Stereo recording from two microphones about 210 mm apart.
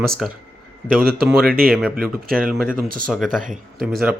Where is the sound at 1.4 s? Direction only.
45° right (ahead or behind).